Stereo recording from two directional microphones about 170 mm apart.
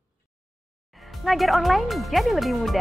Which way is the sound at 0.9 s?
Centre (ahead or behind).